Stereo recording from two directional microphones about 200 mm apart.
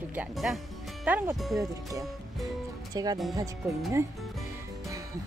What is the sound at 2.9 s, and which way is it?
Speech, 20° right (ahead or behind).